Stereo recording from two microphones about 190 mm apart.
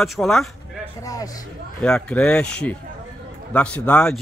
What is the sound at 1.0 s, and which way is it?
Speech, 20° left (ahead or behind).